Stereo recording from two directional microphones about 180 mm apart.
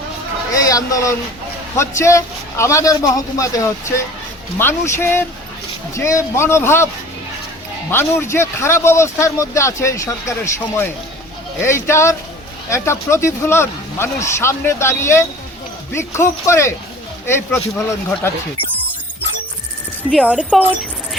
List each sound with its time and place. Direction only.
0.5 s a man's voice: 20° left (ahead or behind)
7.9 s a man's voice: 15° left (ahead or behind)
20.1 s speech: centre (ahead or behind)